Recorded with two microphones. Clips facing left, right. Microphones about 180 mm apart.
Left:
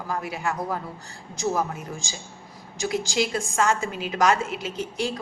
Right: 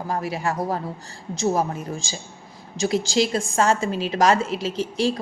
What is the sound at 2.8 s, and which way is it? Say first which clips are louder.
A woman's voice: right 4 dB; 30° right (ahead or behind).